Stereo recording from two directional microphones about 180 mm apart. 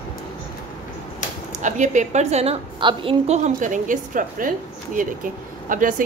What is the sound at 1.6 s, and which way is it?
A woman's voice, 40° right (ahead or behind).